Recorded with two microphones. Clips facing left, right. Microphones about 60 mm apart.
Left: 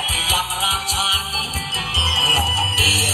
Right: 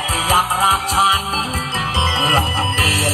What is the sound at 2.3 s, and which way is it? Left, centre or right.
Music, right.